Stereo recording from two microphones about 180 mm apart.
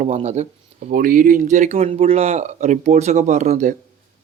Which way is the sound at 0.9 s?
50° right (ahead or behind).